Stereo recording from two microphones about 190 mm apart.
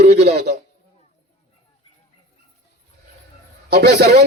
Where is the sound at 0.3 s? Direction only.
60° right (ahead or behind).